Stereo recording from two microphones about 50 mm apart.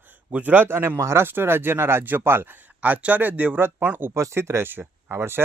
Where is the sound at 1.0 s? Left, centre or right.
Right.